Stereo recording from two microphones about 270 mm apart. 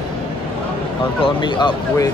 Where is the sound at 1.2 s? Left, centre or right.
Centre.